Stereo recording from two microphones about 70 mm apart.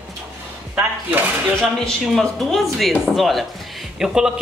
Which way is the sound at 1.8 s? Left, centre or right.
Centre.